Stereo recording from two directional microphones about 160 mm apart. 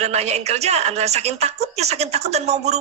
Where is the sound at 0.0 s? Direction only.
45° right (ahead or behind).